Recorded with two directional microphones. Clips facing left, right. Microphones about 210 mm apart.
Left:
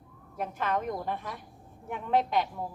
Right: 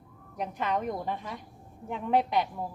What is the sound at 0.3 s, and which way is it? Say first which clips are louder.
A woman's voice: even; 15° right (ahead or behind).